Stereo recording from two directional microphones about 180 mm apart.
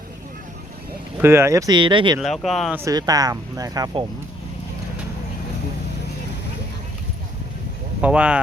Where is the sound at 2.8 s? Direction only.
20° right (ahead or behind).